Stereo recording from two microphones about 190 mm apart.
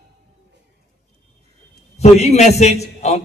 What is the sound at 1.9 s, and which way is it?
A man's voice, 35° left (ahead or behind).